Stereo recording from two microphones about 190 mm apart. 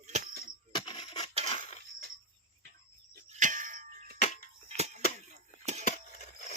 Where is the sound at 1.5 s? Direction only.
30° left (ahead or behind).